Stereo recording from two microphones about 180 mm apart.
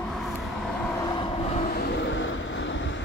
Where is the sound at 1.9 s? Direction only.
90° left.